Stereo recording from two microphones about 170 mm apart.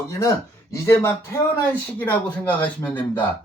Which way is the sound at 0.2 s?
20° left (ahead or behind).